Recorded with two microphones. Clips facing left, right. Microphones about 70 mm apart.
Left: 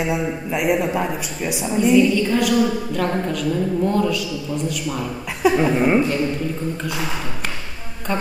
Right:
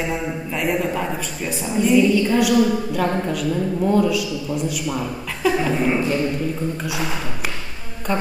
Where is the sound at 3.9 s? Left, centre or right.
Centre.